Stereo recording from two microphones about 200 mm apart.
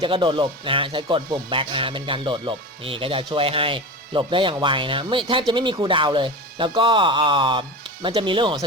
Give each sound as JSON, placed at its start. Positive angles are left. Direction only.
{"t": 0.0, "sound": "speech", "side_deg": -25}